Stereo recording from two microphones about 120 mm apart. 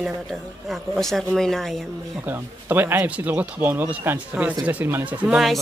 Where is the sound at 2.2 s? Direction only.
15° right (ahead or behind).